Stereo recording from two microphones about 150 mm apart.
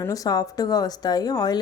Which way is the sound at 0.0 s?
25° left (ahead or behind).